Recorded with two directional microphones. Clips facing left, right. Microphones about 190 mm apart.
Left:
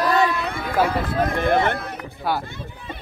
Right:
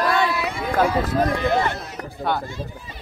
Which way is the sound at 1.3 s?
55° left (ahead or behind).